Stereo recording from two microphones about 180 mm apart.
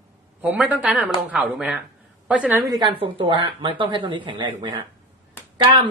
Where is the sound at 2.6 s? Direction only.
25° right (ahead or behind).